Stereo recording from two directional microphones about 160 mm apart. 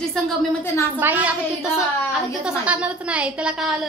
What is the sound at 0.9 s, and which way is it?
A woman's voice, 10° right (ahead or behind).